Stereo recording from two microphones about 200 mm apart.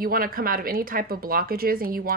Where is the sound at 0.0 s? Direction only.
45° right (ahead or behind).